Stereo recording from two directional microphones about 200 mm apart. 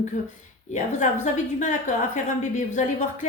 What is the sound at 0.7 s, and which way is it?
A woman's voice, 35° left (ahead or behind).